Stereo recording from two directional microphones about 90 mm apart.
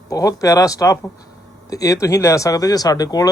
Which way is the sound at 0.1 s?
40° left (ahead or behind).